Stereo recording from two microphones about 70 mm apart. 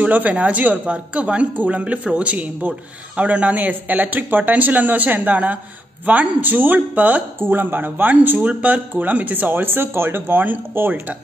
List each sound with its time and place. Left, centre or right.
0.0 s speech: right